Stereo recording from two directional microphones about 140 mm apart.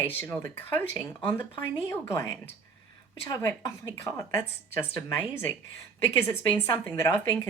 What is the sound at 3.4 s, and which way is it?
Speech, 15° left (ahead or behind).